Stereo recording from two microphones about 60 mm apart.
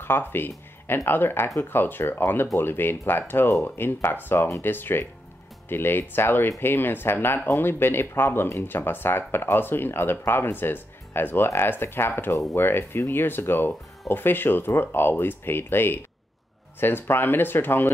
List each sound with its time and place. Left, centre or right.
0.0 s speech: left